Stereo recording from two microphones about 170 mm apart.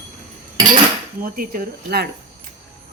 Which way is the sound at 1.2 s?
55° right (ahead or behind).